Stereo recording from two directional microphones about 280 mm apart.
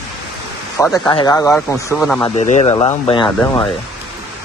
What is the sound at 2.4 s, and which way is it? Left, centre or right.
Speech, left.